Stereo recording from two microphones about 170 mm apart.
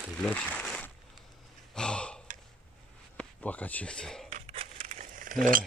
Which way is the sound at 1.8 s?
5° left (ahead or behind).